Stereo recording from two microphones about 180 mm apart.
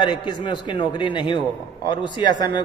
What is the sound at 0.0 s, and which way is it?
A man's voice, 25° left (ahead or behind).